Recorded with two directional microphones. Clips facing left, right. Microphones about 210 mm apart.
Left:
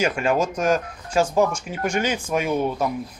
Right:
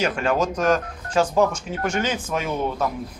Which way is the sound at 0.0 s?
10° left (ahead or behind).